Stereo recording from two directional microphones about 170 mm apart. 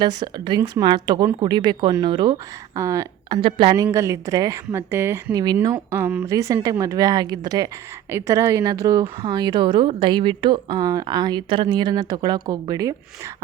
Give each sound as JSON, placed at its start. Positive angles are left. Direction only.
{"t": 0.0, "sound": "speech", "side_deg": -25}
{"t": 3.8, "sound": "a woman's voice", "side_deg": -15}